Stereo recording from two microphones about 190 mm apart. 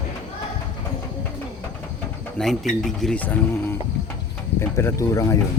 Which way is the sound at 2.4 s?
5° left (ahead or behind).